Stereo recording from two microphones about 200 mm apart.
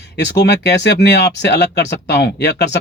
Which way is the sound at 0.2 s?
60° left (ahead or behind).